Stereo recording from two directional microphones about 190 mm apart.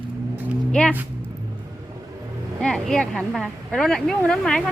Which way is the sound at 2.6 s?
5° left (ahead or behind).